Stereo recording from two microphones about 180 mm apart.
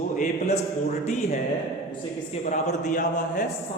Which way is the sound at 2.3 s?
40° left (ahead or behind).